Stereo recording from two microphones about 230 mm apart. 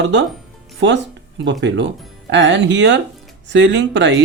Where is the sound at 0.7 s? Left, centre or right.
Right.